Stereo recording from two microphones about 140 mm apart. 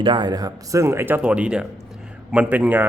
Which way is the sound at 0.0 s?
30° right (ahead or behind).